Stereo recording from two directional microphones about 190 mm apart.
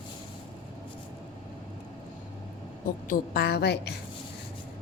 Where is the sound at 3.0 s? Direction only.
50° left (ahead or behind).